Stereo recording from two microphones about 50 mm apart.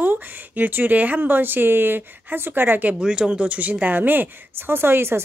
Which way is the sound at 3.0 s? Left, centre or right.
Centre.